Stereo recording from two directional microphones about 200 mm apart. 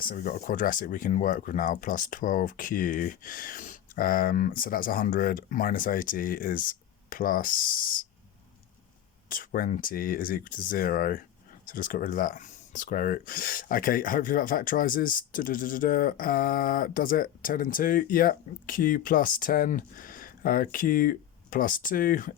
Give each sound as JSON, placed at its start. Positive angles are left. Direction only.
{"t": 0.0, "sound": "speech", "side_deg": 45}
{"t": 9.3, "sound": "speech", "side_deg": 45}